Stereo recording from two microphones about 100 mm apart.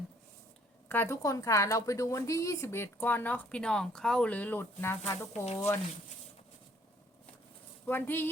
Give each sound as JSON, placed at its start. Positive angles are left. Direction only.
{"t": 0.9, "sound": "a woman's voice", "side_deg": 25}
{"t": 7.9, "sound": "a woman's voice", "side_deg": 20}